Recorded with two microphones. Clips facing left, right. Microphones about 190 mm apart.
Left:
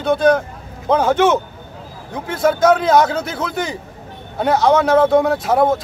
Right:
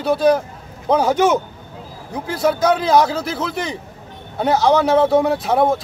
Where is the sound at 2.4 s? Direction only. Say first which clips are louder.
Left 3 dB; centre (ahead or behind).